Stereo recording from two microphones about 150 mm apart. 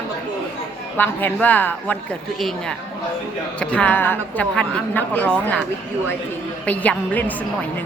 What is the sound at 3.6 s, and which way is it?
A woman's voice, 10° left (ahead or behind).